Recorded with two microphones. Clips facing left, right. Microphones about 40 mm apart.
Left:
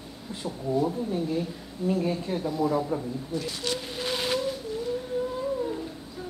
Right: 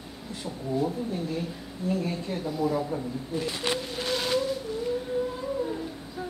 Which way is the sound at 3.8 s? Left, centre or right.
Centre.